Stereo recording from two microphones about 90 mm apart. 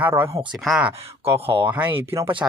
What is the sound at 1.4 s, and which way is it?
Speech, 80° right.